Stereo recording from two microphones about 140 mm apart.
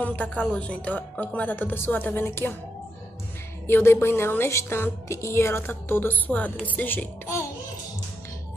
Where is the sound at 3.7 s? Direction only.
20° left (ahead or behind).